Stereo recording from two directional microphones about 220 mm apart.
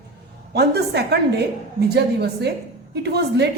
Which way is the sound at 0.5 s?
50° right (ahead or behind).